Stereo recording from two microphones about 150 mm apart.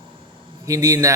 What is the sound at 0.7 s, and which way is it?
Speech, 25° right (ahead or behind).